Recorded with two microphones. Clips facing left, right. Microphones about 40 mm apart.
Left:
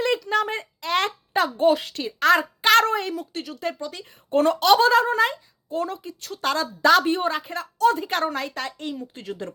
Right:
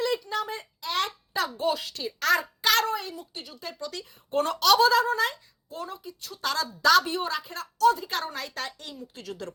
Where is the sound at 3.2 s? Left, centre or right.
Left.